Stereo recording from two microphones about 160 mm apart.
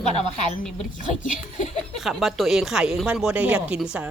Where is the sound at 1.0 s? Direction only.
55° left (ahead or behind).